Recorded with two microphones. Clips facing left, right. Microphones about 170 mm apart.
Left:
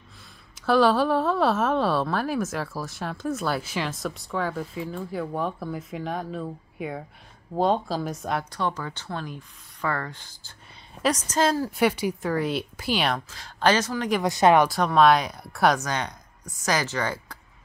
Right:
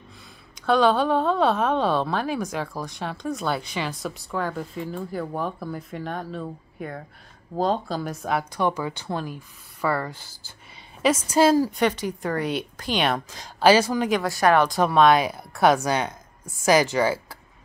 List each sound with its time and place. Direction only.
0.7 s a woman's voice: centre (ahead or behind)
11.7 s a woman's voice: 10° left (ahead or behind)
13.3 s speech: 15° right (ahead or behind)
14.2 s speech: 20° left (ahead or behind)
14.7 s a woman's voice: centre (ahead or behind)